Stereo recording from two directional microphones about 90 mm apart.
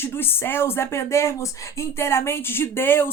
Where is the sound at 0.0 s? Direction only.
25° left (ahead or behind).